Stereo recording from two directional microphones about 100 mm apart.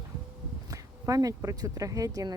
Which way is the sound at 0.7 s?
35° right (ahead or behind).